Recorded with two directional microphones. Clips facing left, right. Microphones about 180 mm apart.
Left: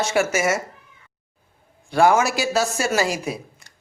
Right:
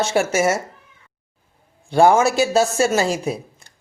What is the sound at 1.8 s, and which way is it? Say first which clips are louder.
A woman's voice: right 3 dB; 25° right (ahead or behind).